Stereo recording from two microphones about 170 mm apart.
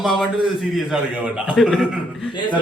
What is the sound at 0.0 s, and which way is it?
A man's voice, centre (ahead or behind).